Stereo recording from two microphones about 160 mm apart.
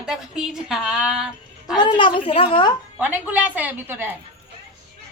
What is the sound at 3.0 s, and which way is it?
A woman's voice, 10° right (ahead or behind).